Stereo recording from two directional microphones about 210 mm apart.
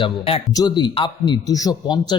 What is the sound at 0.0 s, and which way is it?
Speech, 25° left (ahead or behind).